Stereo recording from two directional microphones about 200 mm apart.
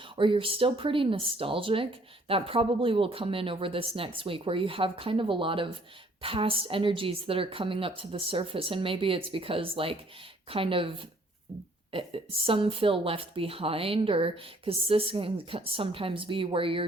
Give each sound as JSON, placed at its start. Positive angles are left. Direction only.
{"t": 0.2, "sound": "speech", "side_deg": -25}